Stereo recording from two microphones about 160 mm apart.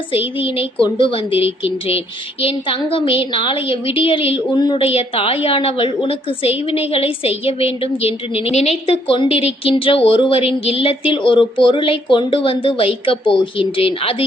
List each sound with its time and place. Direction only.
0.3 s speech: 35° left (ahead or behind)